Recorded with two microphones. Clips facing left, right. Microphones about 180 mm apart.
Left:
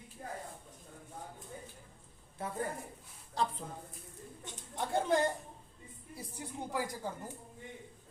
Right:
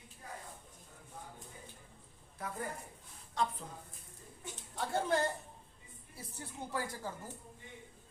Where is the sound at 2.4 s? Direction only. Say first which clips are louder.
Left 4 dB; 25° left (ahead or behind).